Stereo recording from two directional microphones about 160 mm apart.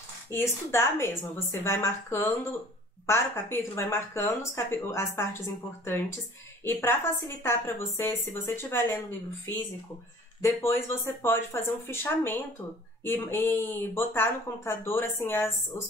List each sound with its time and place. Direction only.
0.3 s speech: 15° left (ahead or behind)
6.6 s speech: 15° left (ahead or behind)
10.4 s speech: 15° left (ahead or behind)